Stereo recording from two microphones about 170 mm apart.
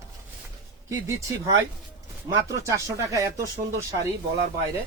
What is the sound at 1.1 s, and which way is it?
Speech, 20° right (ahead or behind).